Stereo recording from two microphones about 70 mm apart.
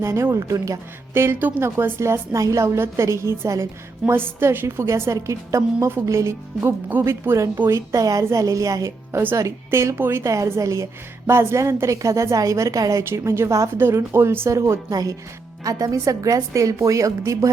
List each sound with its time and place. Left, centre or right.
0.0 s a woman's voice: right
4.0 s a woman's voice: right
7.7 s a woman's voice: right
9.1 s a woman's voice: right
10.3 s a woman's voice: right
11.3 s a woman's voice: right